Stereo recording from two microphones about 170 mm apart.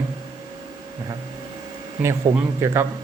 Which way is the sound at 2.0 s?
15° right (ahead or behind).